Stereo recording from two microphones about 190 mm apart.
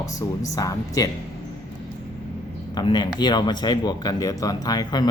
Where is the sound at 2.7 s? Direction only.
20° left (ahead or behind).